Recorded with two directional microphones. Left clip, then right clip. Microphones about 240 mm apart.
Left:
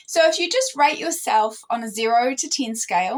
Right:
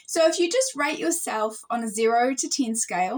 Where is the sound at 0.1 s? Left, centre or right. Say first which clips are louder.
Left 3 dB; centre.